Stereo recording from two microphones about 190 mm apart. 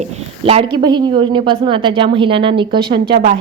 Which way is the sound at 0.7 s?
25° right (ahead or behind).